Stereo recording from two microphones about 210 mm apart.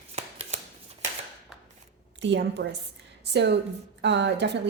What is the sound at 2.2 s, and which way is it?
A woman's voice, 55° right (ahead or behind).